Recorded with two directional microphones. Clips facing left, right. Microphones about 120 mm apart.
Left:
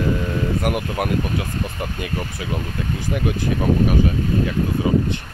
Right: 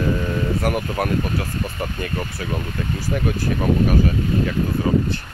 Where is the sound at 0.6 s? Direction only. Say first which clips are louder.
Even; 10° left (ahead or behind).